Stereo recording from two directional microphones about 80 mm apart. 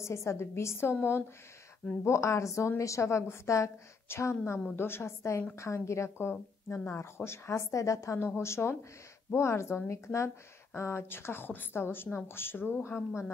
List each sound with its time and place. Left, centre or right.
0.0 s speech: left
2.0 s speech: left